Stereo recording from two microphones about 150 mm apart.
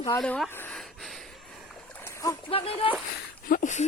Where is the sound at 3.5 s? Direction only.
60° left (ahead or behind).